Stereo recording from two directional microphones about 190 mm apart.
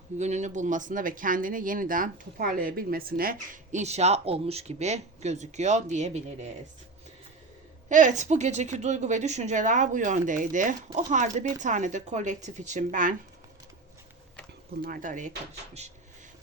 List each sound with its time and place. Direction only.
0.2 s speech: 35° right (ahead or behind)
7.9 s speech: 40° right (ahead or behind)
14.8 s speech: 45° right (ahead or behind)